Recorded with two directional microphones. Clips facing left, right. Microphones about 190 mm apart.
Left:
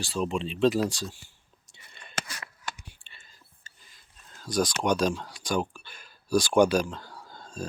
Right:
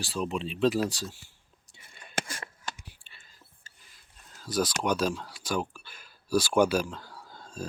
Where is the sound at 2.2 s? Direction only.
45° right (ahead or behind).